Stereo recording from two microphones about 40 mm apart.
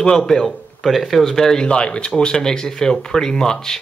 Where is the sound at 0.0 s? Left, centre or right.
Centre.